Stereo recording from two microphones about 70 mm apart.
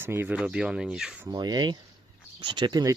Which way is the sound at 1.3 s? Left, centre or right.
Right.